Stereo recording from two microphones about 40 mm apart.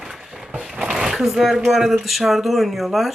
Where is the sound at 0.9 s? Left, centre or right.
Centre.